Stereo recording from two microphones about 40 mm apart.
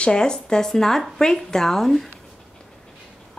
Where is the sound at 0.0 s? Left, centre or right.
Centre.